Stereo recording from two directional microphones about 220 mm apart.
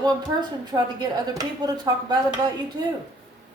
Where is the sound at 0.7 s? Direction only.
15° right (ahead or behind).